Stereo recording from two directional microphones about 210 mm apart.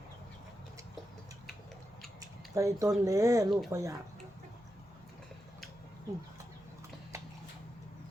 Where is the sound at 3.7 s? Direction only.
15° right (ahead or behind).